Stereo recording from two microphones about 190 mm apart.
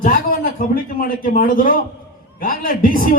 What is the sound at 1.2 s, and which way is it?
A man's voice, 45° left (ahead or behind).